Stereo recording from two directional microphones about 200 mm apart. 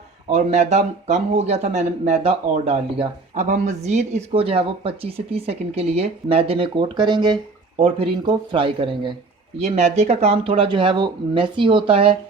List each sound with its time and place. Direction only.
0.3 s speech: 35° right (ahead or behind)